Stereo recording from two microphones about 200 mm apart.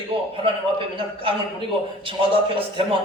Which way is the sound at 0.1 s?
30° right (ahead or behind).